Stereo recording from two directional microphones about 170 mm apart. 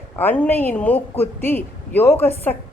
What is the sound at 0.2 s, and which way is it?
A woman's voice, 10° left (ahead or behind).